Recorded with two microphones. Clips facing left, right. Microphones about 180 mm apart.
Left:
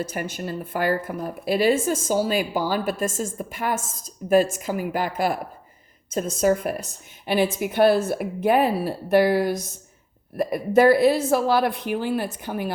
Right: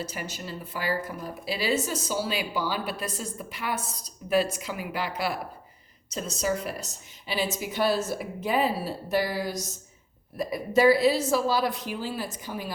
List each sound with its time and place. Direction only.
0.0 s a woman's voice: 55° left (ahead or behind)